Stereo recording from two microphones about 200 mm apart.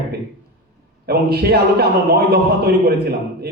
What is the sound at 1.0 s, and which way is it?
A man's voice, 50° right (ahead or behind).